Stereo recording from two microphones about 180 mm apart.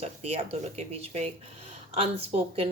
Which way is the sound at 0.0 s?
35° right (ahead or behind).